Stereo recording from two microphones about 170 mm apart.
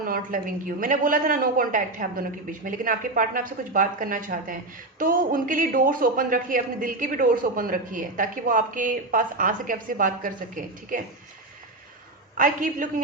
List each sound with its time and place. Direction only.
0.0 s a woman's voice: 55° right (ahead or behind)
12.4 s a woman's voice: 50° right (ahead or behind)